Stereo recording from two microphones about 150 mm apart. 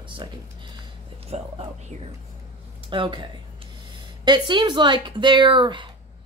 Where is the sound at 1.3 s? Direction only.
45° right (ahead or behind).